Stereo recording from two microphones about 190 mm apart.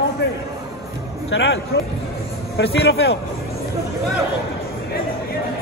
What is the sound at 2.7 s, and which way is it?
Speech, 60° left (ahead or behind).